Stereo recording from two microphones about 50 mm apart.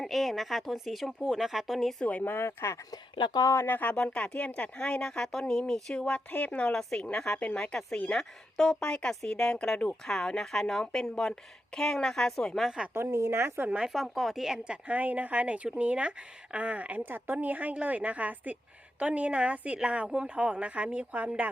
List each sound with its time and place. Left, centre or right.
0.0 s speech: centre
2.2 s speech: left
3.7 s speech: left
3.9 s speech: left
6.3 s speech: left
6.7 s speech: centre
12.9 s a woman's voice: right
13.8 s speech: centre
14.6 s speech: centre
14.9 s speech: right